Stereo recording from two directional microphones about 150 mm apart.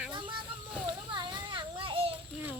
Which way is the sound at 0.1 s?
30° right (ahead or behind).